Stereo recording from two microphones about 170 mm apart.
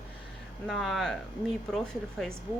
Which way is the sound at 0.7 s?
Centre (ahead or behind).